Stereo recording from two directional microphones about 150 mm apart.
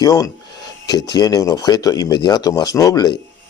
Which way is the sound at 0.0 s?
20° left (ahead or behind).